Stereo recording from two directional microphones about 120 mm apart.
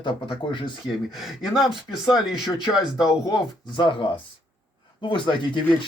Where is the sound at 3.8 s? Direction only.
45° left (ahead or behind).